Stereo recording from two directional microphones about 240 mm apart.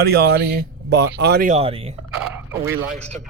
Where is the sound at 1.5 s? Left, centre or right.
Right.